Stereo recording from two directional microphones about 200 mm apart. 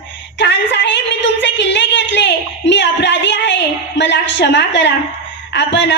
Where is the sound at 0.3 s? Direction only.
60° left (ahead or behind).